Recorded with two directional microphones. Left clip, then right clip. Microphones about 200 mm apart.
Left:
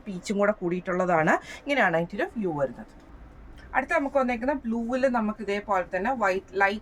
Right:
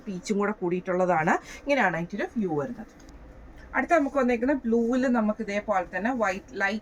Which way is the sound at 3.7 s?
25° left (ahead or behind).